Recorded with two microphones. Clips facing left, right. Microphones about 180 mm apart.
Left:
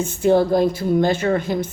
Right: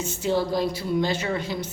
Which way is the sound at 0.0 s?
55° left (ahead or behind).